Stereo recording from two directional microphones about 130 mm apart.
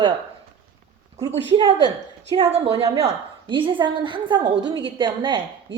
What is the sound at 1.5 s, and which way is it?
Speech, 35° right (ahead or behind).